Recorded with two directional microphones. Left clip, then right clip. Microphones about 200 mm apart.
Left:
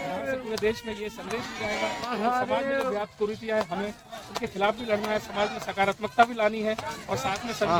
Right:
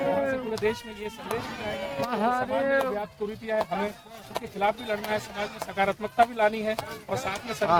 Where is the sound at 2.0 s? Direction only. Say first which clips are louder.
Right 4 dB; 10° right (ahead or behind).